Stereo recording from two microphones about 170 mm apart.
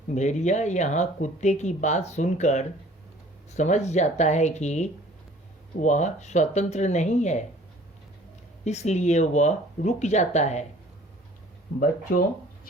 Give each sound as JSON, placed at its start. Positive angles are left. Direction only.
{"t": 0.1, "sound": "speech", "side_deg": 45}
{"t": 8.6, "sound": "speech", "side_deg": 40}